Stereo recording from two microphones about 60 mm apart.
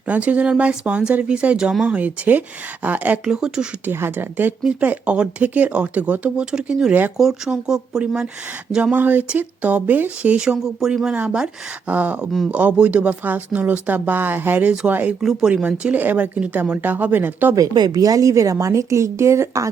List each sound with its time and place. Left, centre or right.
0.1 s speech: right
3.2 s speech: centre
3.9 s speech: right
6.4 s speech: centre
8.7 s speech: centre
10.3 s speech: centre; by 15.1 s right
15.2 s speech: centre
15.4 s speech: centre
16.0 s speech: right
17.5 s speech: right